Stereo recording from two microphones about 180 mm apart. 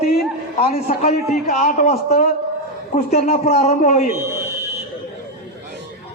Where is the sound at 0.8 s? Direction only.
55° left (ahead or behind).